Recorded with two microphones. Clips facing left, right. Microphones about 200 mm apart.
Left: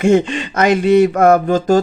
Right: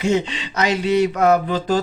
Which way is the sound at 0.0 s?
50° left (ahead or behind).